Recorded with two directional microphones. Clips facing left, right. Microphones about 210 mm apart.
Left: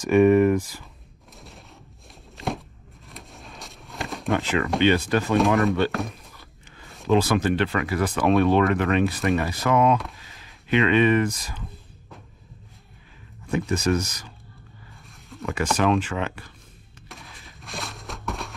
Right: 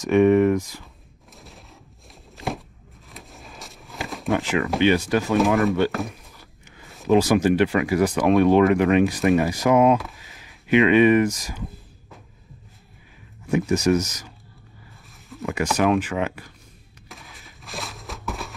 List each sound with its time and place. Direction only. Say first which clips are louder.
0.0 s speech: even; centre (ahead or behind)
0.6 s speech: even; 15° right (ahead or behind)
1.3 s a sound: even; centre (ahead or behind)
4.3 s speech: right 1 dB; 15° right (ahead or behind)
5.9 s speech: right 1 dB; centre (ahead or behind)
13.5 s speech: right 4 dB; 15° right (ahead or behind)
15.4 s speech: right 2 dB; 15° right (ahead or behind)
17.1 s a sound: even; centre (ahead or behind)